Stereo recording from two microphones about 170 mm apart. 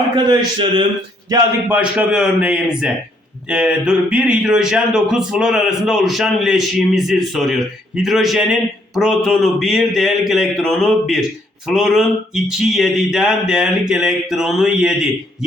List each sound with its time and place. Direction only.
0.3 s a man's voice: 25° right (ahead or behind)
1.7 s a man's voice: 5° right (ahead or behind)